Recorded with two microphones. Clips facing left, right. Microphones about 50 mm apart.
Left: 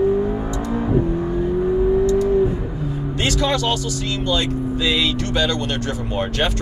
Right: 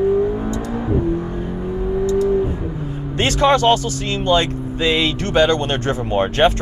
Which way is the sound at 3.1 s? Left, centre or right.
Right.